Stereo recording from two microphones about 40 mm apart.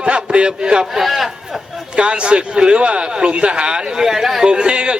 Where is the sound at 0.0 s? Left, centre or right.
Right.